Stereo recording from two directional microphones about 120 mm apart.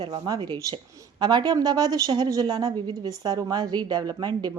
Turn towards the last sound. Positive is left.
turn(degrees=-35)  # may be behind; listen again after turning